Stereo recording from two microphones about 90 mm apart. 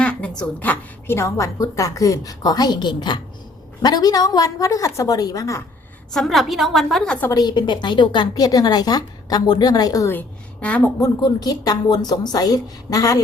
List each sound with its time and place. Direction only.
0.0 s a sound: 10° left (ahead or behind)
1.0 s a woman's voice: 30° left (ahead or behind)
6.1 s a woman's voice: 5° left (ahead or behind)
7.3 s a woman's voice: 50° left (ahead or behind)
10.1 s a woman's voice: 20° left (ahead or behind)
11.2 s a woman's voice: 45° left (ahead or behind)